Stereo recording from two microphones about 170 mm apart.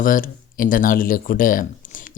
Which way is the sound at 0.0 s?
55° left (ahead or behind).